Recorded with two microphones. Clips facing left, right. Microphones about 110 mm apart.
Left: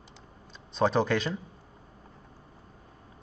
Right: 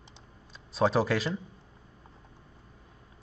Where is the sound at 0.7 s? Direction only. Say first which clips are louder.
Even; 5° right (ahead or behind).